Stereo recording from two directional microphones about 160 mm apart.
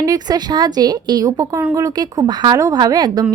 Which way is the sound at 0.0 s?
25° right (ahead or behind).